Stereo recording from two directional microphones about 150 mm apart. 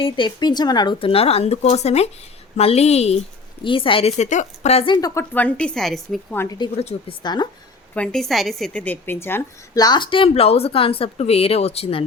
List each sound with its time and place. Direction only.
0.0 s a woman's voice: 30° left (ahead or behind)
3.6 s speech: 35° left (ahead or behind)
4.9 s a woman's voice: 25° left (ahead or behind)
5.3 s a woman's voice: 10° left (ahead or behind)
6.3 s a woman's voice: 15° left (ahead or behind)
6.7 s speech: 40° left (ahead or behind)
7.2 s a woman's voice: 30° left (ahead or behind)
7.9 s a woman's voice: 5° left (ahead or behind)
9.8 s speech: 30° left (ahead or behind)